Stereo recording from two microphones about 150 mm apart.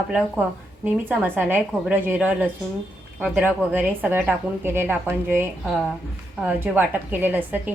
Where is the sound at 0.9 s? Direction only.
10° right (ahead or behind).